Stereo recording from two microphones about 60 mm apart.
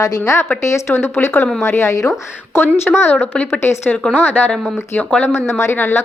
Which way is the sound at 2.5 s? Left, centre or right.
Left.